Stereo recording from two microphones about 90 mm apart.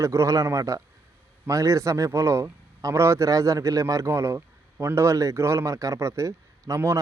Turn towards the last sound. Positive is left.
turn(degrees=-35)  # may be behind; listen again after turning